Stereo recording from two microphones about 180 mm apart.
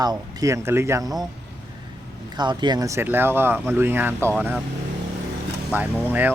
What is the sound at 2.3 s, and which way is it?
A man's voice, 25° right (ahead or behind).